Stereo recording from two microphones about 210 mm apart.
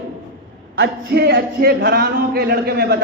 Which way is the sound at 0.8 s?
50° right (ahead or behind).